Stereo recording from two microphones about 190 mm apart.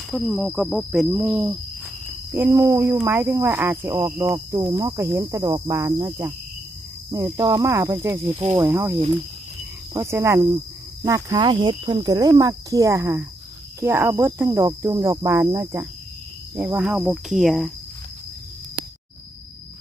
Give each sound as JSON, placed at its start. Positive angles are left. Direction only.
{"t": 0.1, "sound": "speech", "side_deg": 0}
{"t": 1.1, "sound": "speech", "side_deg": -10}